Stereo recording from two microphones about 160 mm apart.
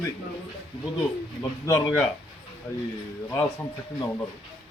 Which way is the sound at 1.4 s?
20° left (ahead or behind).